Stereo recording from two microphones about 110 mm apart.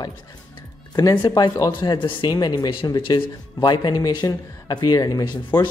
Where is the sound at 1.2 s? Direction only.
40° left (ahead or behind).